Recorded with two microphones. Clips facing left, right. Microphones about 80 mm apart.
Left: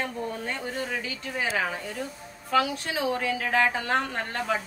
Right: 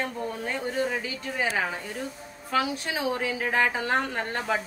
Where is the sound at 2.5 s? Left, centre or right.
Centre.